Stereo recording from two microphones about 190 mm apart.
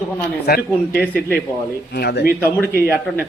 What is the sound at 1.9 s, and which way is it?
Speech, 55° left (ahead or behind).